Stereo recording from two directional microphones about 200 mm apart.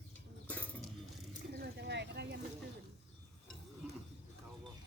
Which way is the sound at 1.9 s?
60° right (ahead or behind).